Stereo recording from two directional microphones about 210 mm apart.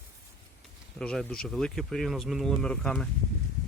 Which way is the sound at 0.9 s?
5° left (ahead or behind).